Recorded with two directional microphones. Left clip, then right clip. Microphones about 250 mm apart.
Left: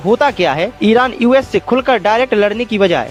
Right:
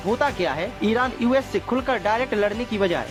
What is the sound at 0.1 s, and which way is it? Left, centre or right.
Speech, left.